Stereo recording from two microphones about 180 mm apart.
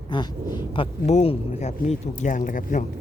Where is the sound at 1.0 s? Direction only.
35° left (ahead or behind).